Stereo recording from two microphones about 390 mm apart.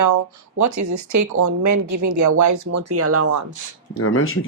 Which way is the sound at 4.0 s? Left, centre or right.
Left.